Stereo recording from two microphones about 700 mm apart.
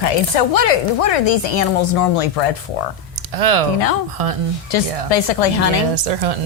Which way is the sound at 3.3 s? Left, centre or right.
Right.